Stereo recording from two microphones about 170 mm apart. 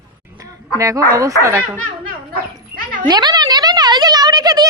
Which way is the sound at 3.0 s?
25° right (ahead or behind).